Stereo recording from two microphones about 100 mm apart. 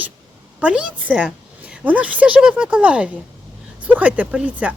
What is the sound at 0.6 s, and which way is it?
Speech, 10° right (ahead or behind).